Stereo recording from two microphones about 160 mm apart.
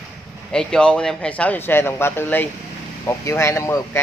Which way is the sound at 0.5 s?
5° left (ahead or behind).